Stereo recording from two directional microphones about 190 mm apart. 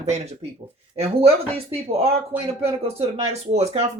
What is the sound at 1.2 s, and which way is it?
Speech, 30° right (ahead or behind).